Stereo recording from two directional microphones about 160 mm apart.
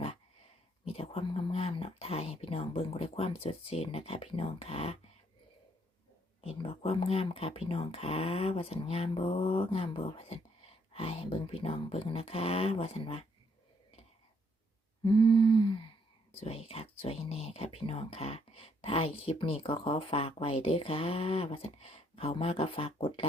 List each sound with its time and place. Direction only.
0.9 s speech: 35° left (ahead or behind)
6.4 s speech: 35° left (ahead or behind)
15.0 s humming: 30° left (ahead or behind)
16.4 s speech: 40° left (ahead or behind)